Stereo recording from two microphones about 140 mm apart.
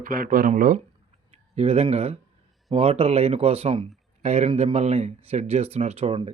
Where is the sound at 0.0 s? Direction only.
80° right.